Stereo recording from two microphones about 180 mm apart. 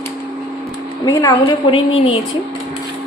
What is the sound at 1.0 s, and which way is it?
A woman's voice, 20° left (ahead or behind).